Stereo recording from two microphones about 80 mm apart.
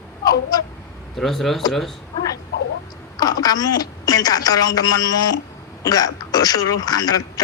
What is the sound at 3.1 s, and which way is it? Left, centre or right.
A man's voice, left.